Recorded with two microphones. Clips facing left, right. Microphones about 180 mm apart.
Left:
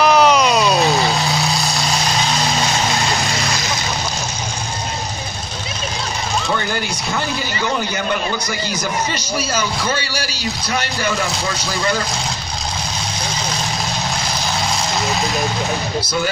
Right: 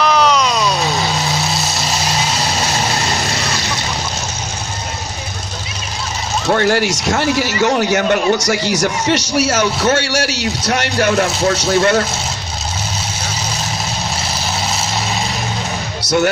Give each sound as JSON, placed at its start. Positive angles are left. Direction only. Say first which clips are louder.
{"t": 0.0, "sound": "vehicle", "louder": "left 1 dB", "side_deg": 10}
{"t": 1.5, "sound": "vehicle", "louder": "even", "side_deg": -5}
{"t": 6.5, "sound": "a man's voice", "louder": "right 7 dB", "side_deg": -75}